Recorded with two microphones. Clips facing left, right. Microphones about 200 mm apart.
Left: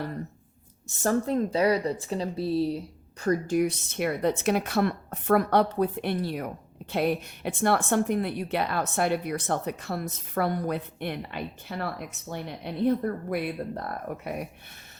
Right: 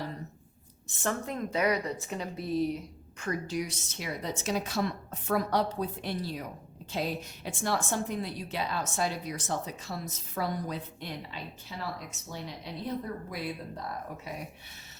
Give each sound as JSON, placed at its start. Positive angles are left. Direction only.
{"t": 1.0, "sound": "speech", "side_deg": 35}
{"t": 3.4, "sound": "a woman's voice", "side_deg": 55}